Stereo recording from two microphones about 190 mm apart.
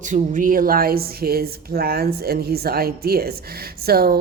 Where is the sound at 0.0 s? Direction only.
40° right (ahead or behind).